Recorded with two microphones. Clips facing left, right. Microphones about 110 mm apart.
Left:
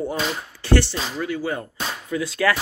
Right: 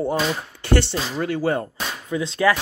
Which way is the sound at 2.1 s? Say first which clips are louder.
Right 2 dB; 20° right (ahead or behind).